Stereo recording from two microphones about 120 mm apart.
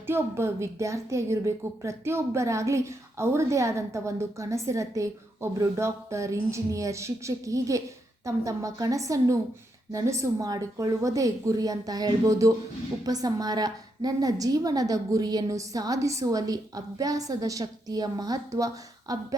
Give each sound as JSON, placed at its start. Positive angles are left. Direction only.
{"t": 0.1, "sound": "a woman's voice", "side_deg": -20}